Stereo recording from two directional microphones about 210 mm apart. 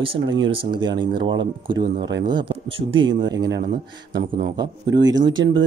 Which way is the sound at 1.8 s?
50° right (ahead or behind).